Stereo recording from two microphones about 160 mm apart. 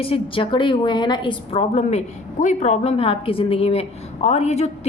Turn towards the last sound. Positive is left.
turn(degrees=45)  # may be behind; listen again after turning